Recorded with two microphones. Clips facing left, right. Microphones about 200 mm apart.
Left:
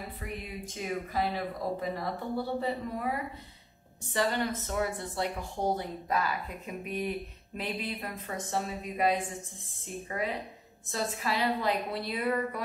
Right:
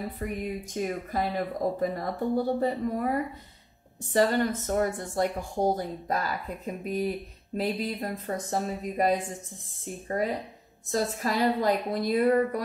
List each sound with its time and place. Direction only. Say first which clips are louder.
0.2 s speech: right 8 dB; 45° right (ahead or behind)
4.1 s a woman's voice: right 6 dB; 45° right (ahead or behind)